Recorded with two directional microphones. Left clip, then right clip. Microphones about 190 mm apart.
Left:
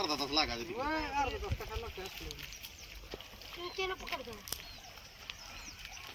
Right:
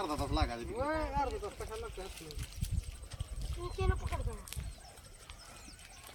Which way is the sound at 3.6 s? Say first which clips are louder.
Left 2 dB; 10° right (ahead or behind).